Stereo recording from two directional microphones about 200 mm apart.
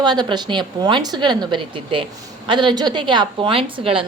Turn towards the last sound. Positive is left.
turn(degrees=-25)  # may be behind; listen again after turning